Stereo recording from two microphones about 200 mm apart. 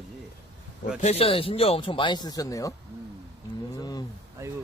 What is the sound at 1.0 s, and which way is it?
Speech, 30° left (ahead or behind).